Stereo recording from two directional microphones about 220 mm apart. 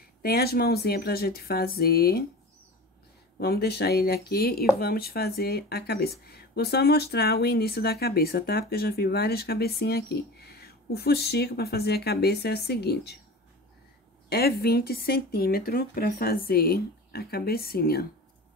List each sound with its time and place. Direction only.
0.2 s speech: 45° left (ahead or behind)
3.3 s speech: 45° left (ahead or behind)
14.3 s speech: 45° left (ahead or behind)